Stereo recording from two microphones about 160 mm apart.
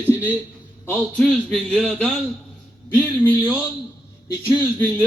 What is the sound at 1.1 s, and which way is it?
A man's voice, 5° left (ahead or behind).